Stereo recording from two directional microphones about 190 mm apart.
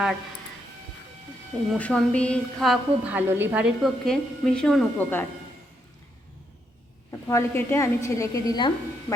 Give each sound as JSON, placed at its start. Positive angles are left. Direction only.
{"t": 1.7, "sound": "a woman's voice", "side_deg": 5}
{"t": 7.3, "sound": "a woman's voice", "side_deg": 15}